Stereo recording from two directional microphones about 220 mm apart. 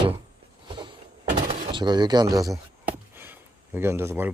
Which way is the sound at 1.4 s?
20° right (ahead or behind).